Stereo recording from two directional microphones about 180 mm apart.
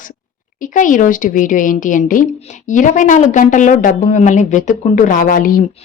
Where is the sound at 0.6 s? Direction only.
45° left (ahead or behind).